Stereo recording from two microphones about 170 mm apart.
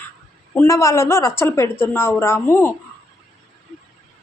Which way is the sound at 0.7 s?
20° left (ahead or behind).